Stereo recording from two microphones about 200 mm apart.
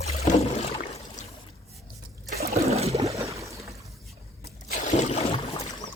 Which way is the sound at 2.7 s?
30° right (ahead or behind).